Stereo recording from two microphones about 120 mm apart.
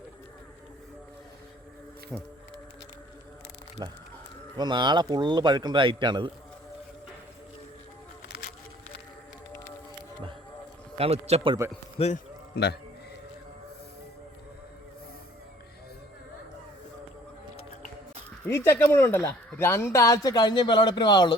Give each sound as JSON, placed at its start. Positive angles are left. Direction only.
{"t": 2.1, "sound": "speech", "side_deg": 0}
{"t": 3.8, "sound": "a man's voice", "side_deg": -35}
{"t": 10.9, "sound": "a man's voice", "side_deg": -55}
{"t": 11.9, "sound": "speech", "side_deg": 60}
{"t": 18.4, "sound": "speech", "side_deg": 20}